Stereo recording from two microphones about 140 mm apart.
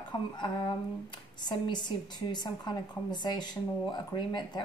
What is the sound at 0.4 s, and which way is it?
A woman's voice, 35° left (ahead or behind).